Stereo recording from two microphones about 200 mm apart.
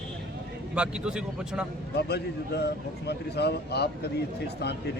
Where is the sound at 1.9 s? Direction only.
55° left (ahead or behind).